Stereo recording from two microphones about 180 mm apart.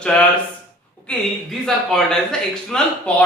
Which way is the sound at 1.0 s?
5° left (ahead or behind).